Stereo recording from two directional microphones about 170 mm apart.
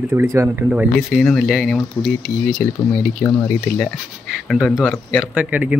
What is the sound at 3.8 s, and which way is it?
Speech, centre (ahead or behind).